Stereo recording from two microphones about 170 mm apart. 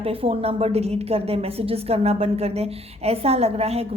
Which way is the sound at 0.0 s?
35° right (ahead or behind).